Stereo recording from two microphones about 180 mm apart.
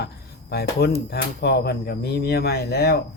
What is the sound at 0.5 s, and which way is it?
Speech, 60° left (ahead or behind).